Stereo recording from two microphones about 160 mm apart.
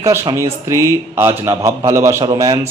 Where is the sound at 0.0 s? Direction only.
20° right (ahead or behind).